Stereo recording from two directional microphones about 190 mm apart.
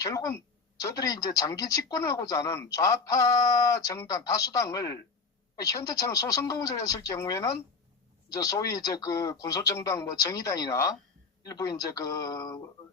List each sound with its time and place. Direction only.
0.0 s speech: 15° left (ahead or behind)